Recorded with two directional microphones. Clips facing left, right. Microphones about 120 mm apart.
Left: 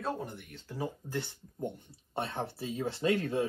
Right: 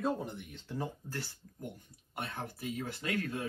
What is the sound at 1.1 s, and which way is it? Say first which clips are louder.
Speech: left 5 dB; 20° left (ahead or behind).